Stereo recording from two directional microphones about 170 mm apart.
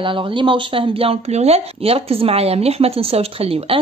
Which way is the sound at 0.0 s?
30° right (ahead or behind).